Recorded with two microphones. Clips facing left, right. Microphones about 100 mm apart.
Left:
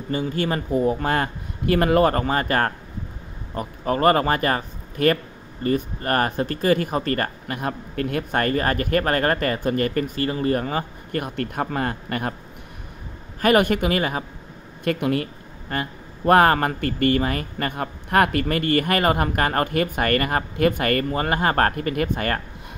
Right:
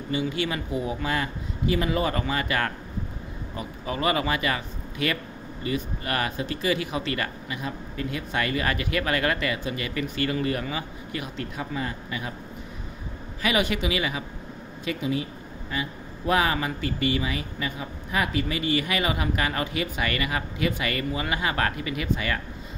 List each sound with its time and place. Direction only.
0.1 s speech: 45° left (ahead or behind)
13.4 s speech: 50° left (ahead or behind)
14.9 s speech: 60° left (ahead or behind)